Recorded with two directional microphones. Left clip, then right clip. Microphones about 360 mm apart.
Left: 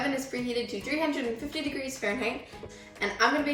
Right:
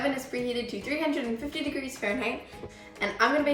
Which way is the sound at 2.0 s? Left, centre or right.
Centre.